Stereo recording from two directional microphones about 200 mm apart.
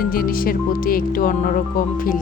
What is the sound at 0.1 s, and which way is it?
A woman's voice, 45° left (ahead or behind).